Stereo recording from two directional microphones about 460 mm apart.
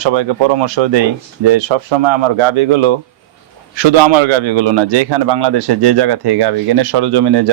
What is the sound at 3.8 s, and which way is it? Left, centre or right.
A man's voice, right.